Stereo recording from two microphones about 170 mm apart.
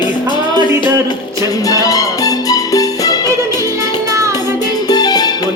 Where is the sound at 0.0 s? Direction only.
25° left (ahead or behind).